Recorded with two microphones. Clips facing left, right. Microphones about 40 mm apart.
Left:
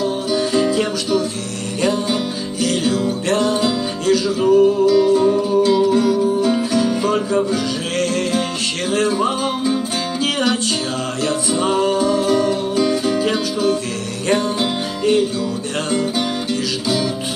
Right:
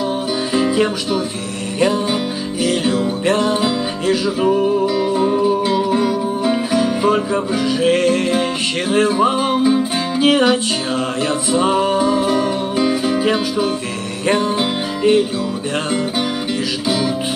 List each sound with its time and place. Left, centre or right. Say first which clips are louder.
0.5 s music: right 4 dB; centre
2.6 s music: right 1 dB; centre
16.8 s music: right 2 dB; centre